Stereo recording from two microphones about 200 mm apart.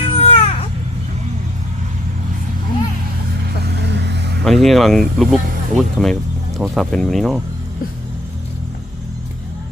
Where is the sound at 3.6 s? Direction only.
55° right (ahead or behind).